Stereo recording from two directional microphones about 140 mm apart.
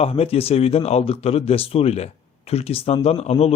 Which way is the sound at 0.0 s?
45° left (ahead or behind).